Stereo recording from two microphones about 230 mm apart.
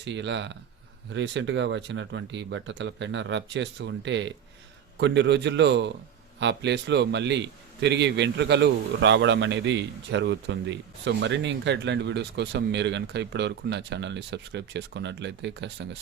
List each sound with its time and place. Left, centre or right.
0.0 s a man's voice: right